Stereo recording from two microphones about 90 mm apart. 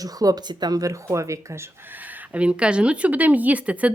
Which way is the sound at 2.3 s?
15° right (ahead or behind).